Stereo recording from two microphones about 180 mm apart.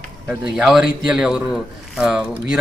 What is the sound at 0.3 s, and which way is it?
A man's voice, 5° right (ahead or behind).